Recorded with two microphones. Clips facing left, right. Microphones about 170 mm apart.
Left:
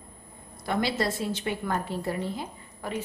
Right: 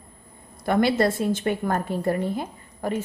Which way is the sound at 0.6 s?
55° right (ahead or behind).